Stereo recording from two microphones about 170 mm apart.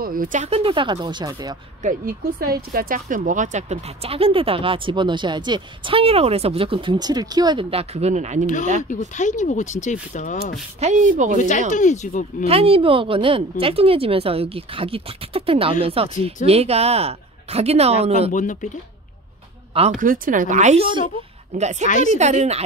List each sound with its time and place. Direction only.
0.0 s speech: 55° right (ahead or behind); by 1.6 s 25° right (ahead or behind)
1.8 s speech: 55° right (ahead or behind); by 7.6 s 25° right (ahead or behind)
7.7 s speech: 40° right (ahead or behind)
8.8 s speech: 45° left (ahead or behind)
10.8 s speech: 45° right (ahead or behind)
11.3 s speech: 45° left (ahead or behind)
12.4 s speech: 35° right (ahead or behind)
18.3 s speech: 50° left (ahead or behind)
20.0 s speech: 50° right (ahead or behind)